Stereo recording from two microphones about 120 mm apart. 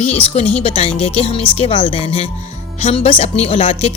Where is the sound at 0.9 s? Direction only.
55° left (ahead or behind).